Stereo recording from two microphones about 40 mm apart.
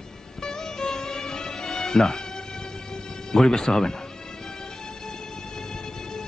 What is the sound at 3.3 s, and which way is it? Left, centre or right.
Speech, centre.